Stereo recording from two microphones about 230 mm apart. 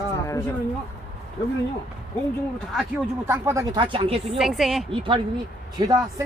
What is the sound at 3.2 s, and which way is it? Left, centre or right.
Speech, centre.